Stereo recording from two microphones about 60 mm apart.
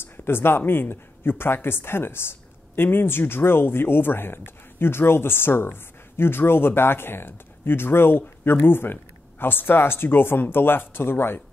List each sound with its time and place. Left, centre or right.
0.0 s speech: left